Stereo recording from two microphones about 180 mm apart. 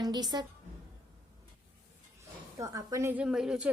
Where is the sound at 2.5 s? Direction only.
20° right (ahead or behind).